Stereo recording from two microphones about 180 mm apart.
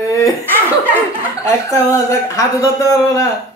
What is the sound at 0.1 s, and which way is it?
Chuckle, 15° left (ahead or behind).